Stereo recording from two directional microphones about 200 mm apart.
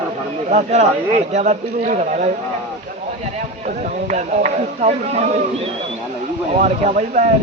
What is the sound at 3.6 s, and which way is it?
Speech, 40° right (ahead or behind).